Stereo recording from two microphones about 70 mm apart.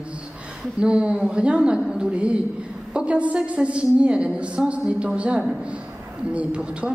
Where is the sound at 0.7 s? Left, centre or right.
Centre.